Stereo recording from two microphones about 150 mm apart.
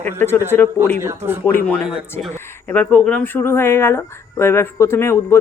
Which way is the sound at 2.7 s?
10° left (ahead or behind).